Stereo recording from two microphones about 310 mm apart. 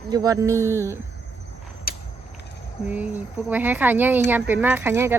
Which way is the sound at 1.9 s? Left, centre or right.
Left.